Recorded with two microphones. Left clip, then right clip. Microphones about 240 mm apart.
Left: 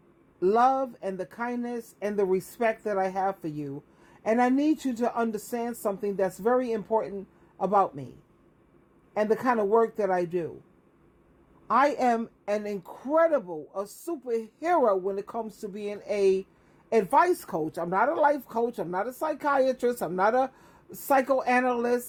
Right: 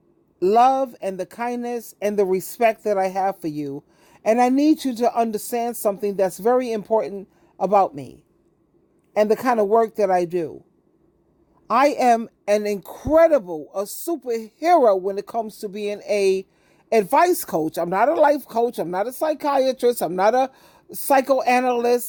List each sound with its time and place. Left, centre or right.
0.3 s speech: right
9.1 s speech: right
11.7 s speech: right